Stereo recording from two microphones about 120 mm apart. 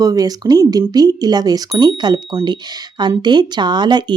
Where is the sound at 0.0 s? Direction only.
30° right (ahead or behind).